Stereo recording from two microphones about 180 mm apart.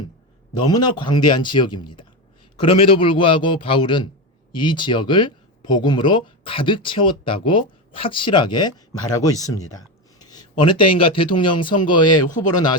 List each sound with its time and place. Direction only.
0.5 s speech: 25° left (ahead or behind)